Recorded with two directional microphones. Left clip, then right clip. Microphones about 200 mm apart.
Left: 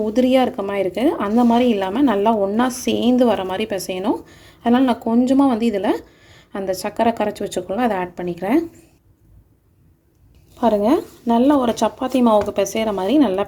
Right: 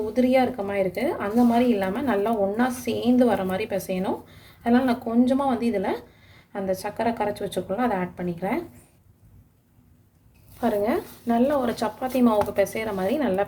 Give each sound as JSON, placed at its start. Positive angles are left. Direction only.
{"t": 0.1, "sound": "a woman's voice", "side_deg": 40}
{"t": 10.6, "sound": "a woman's voice", "side_deg": 35}